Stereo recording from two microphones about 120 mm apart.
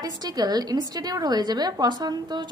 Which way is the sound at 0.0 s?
35° right (ahead or behind).